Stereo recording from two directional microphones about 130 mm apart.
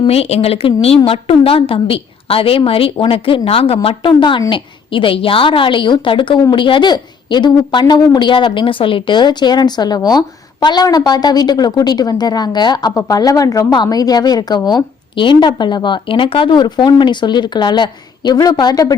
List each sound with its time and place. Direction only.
0.1 s a woman's voice: 50° left (ahead or behind); by 18.9 s 30° left (ahead or behind)